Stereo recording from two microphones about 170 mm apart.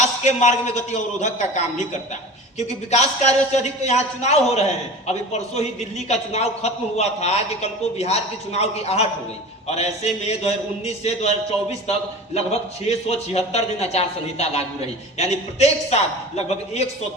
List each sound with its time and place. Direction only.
0.0 s a man's voice: 45° left (ahead or behind)